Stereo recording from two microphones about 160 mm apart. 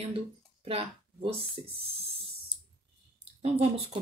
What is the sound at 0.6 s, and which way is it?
Speech, 40° right (ahead or behind).